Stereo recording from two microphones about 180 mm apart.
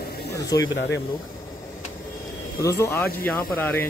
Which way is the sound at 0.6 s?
80° left.